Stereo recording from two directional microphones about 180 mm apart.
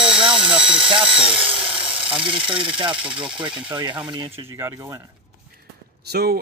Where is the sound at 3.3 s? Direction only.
25° right (ahead or behind).